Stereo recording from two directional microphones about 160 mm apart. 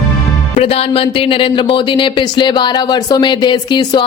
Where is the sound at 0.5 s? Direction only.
40° left (ahead or behind).